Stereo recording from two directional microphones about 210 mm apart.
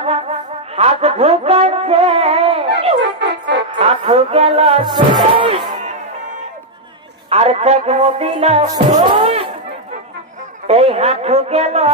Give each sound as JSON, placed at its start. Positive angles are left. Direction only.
{"t": 0.7, "sound": "a sound", "side_deg": -30}
{"t": 3.0, "sound": "music", "side_deg": -55}
{"t": 3.8, "sound": "a sound", "side_deg": -25}
{"t": 5.7, "sound": "music", "side_deg": -35}
{"t": 7.2, "sound": "speech", "side_deg": -30}
{"t": 10.7, "sound": "speech", "side_deg": -30}